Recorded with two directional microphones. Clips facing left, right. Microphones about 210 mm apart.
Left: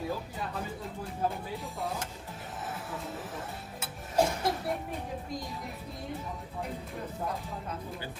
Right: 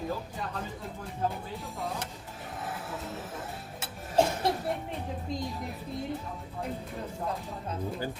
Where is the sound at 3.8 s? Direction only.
25° right (ahead or behind).